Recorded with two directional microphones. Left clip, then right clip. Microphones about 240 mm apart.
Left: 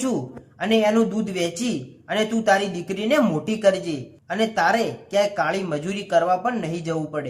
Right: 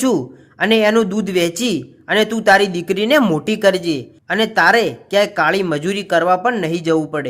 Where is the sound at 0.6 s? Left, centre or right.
Right.